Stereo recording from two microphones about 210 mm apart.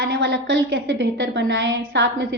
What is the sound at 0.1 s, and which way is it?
A woman's voice, 65° right (ahead or behind).